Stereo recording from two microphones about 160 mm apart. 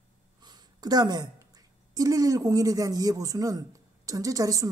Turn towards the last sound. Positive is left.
turn(degrees=-20)  # may be behind; listen again after turning